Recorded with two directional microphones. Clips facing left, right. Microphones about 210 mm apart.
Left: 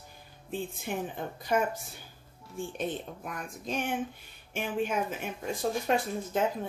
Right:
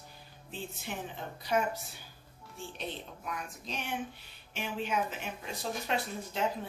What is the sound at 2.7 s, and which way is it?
A woman's voice, 50° left (ahead or behind).